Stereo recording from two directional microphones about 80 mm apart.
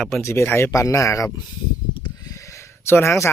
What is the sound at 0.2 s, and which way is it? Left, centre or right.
Speech, left.